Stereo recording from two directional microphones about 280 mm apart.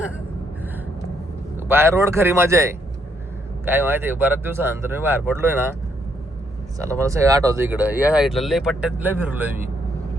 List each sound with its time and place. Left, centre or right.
1.5 s speech: centre
6.8 s speech: centre